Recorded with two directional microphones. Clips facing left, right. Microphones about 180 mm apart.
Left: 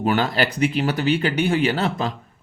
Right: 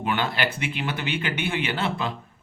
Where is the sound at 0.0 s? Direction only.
40° left (ahead or behind).